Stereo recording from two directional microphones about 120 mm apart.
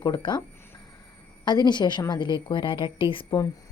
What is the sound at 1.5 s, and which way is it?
A woman's voice, 35° left (ahead or behind).